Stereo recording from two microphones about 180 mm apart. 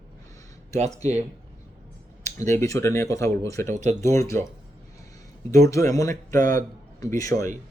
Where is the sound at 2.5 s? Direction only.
15° left (ahead or behind).